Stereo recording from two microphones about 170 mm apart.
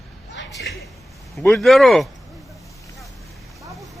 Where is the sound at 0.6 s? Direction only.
85° left.